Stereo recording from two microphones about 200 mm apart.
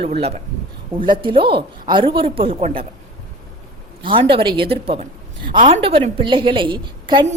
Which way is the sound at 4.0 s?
25° right (ahead or behind).